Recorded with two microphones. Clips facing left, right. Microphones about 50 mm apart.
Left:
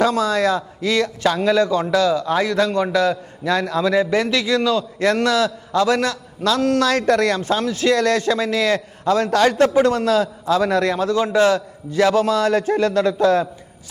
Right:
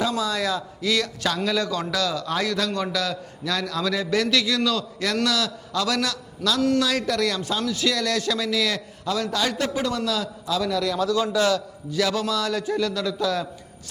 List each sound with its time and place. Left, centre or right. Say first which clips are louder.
0.0 s a man's voice: left 7 dB; left
6.7 s a man's voice: left 7 dB; left